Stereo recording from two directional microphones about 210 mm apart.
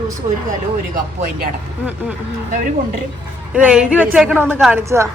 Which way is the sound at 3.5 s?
5° right (ahead or behind).